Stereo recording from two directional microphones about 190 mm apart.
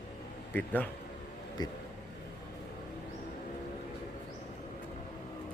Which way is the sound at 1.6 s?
20° left (ahead or behind).